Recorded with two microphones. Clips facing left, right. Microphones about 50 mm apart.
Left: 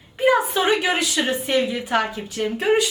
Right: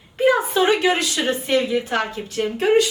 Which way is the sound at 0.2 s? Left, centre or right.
Centre.